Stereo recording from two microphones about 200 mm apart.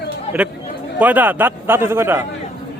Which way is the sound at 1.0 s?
10° right (ahead or behind).